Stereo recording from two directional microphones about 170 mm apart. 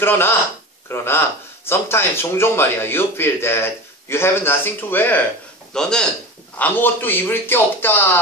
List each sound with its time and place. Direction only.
0.0 s speech: 15° left (ahead or behind)